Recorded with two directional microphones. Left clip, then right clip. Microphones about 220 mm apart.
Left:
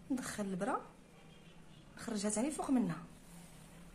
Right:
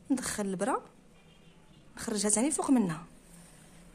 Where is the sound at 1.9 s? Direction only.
50° right (ahead or behind).